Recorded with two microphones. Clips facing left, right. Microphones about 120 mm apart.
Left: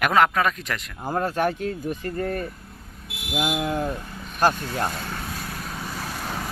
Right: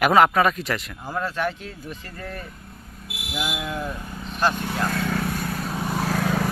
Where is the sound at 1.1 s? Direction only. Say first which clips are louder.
Left 3 dB; 45° left (ahead or behind).